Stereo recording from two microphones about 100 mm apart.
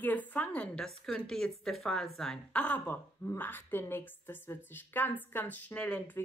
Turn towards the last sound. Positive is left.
turn(degrees=15)  # may be behind; listen again after turning